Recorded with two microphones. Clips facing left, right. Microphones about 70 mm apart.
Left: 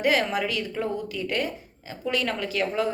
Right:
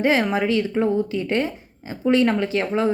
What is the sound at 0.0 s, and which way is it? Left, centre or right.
Speech, right.